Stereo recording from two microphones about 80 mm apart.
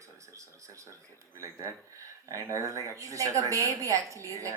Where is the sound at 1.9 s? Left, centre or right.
Right.